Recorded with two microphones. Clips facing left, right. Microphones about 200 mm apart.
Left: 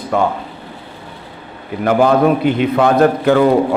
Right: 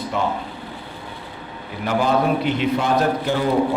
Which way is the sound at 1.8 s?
55° left (ahead or behind).